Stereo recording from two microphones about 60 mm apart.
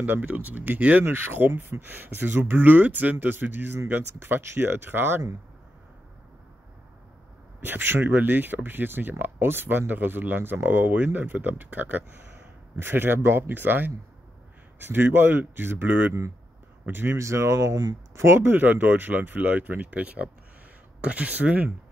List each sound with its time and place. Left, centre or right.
0.0 s speech: right
7.6 s speech: right
17.2 s speech: right
18.1 s speech: right